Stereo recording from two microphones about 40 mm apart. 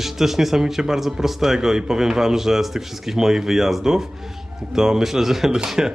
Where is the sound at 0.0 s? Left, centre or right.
Centre.